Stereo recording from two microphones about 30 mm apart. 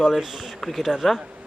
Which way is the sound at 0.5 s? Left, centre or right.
Centre.